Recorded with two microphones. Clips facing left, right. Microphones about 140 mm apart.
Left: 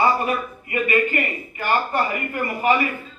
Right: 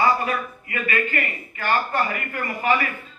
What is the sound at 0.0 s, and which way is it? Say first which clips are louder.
Speech: left 1 dB; 20° left (ahead or behind).